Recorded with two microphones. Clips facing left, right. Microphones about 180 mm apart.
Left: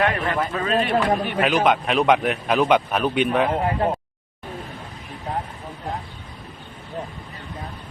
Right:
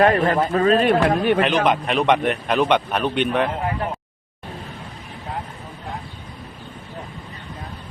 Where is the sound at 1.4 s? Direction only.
Centre (ahead or behind).